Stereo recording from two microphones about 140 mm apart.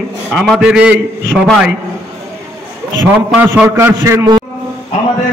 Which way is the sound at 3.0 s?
15° right (ahead or behind).